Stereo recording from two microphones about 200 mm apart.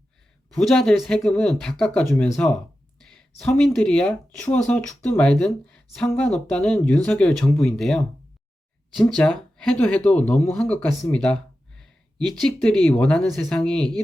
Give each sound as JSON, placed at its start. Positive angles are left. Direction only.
{"t": 0.5, "sound": "speech", "side_deg": 0}
{"t": 11.8, "sound": "a sound", "side_deg": 0}
{"t": 12.4, "sound": "speech", "side_deg": 5}